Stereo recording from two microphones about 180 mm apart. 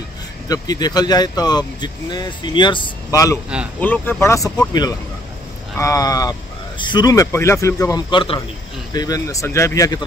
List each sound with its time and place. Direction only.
0.5 s speech: 20° left (ahead or behind)